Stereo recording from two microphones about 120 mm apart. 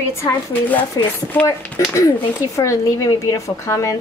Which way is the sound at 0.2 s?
15° left (ahead or behind).